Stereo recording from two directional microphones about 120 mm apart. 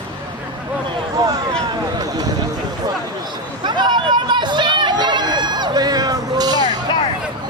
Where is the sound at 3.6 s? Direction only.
40° right (ahead or behind).